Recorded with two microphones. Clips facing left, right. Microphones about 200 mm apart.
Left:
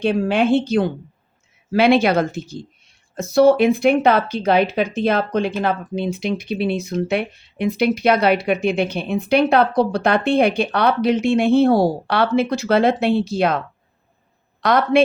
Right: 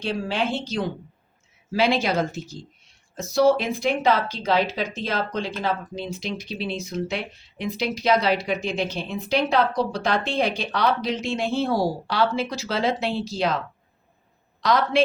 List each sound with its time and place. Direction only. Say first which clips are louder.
0.0 s speech: left 8 dB; 55° left (ahead or behind)
14.6 s a woman's voice: left 5 dB; 60° left (ahead or behind)